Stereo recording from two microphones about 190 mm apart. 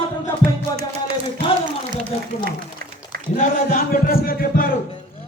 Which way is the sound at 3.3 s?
50° left (ahead or behind).